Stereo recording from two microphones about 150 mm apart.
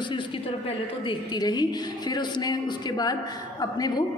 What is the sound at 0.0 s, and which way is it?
A woman's voice, 35° left (ahead or behind).